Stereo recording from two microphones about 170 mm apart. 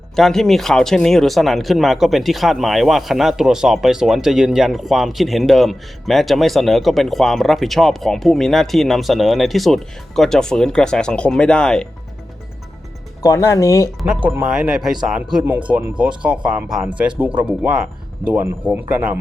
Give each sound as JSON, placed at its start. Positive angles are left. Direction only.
{"t": 0.2, "sound": "speech", "side_deg": 0}
{"t": 13.2, "sound": "speech", "side_deg": 20}
{"t": 14.3, "sound": "speech", "side_deg": -10}